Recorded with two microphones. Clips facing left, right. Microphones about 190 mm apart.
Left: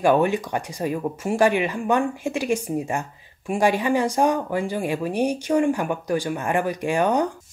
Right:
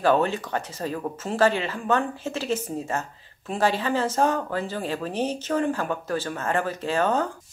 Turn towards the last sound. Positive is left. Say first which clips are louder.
# left 3 dB
turn(degrees=15)  # may be behind; listen again after turning